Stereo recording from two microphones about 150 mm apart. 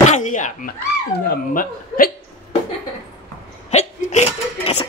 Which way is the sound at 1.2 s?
80° left.